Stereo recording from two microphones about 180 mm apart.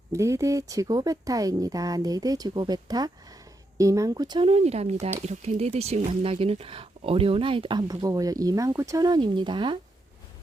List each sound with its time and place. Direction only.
0.1 s speech: 15° right (ahead or behind)